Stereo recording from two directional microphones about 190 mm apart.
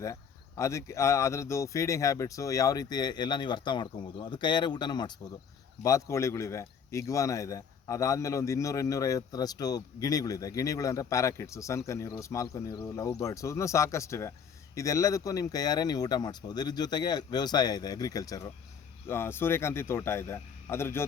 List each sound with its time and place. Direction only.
0.0 s speech: 15° left (ahead or behind)